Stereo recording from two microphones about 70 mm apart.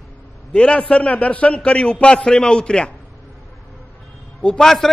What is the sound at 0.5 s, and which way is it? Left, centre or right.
A man's voice, centre.